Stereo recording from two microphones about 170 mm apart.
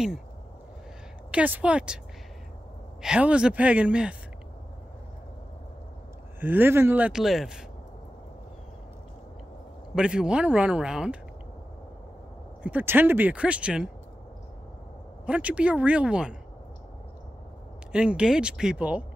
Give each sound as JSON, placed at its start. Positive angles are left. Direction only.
{"t": 1.3, "sound": "speech", "side_deg": -10}
{"t": 3.0, "sound": "speech", "side_deg": -5}
{"t": 6.4, "sound": "speech", "side_deg": -10}
{"t": 9.9, "sound": "speech", "side_deg": -5}
{"t": 12.6, "sound": "speech", "side_deg": -10}
{"t": 15.2, "sound": "speech", "side_deg": -5}
{"t": 17.9, "sound": "speech", "side_deg": -5}